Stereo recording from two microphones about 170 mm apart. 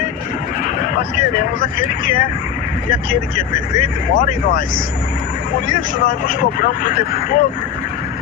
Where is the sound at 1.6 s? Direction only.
50° left (ahead or behind).